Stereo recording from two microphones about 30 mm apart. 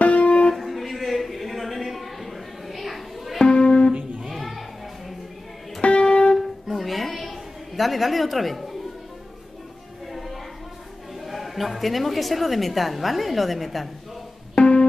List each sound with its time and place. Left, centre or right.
0.0 s music: left
0.6 s a sound: centre
3.4 s music: left
4.3 s music: centre
5.8 s music: left
6.3 s music: centre
11.1 s a woman's voice: centre
14.6 s music: left